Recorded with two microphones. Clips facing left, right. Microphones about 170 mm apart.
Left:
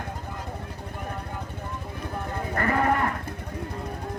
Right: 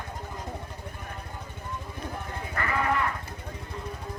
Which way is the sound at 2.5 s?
45° left (ahead or behind).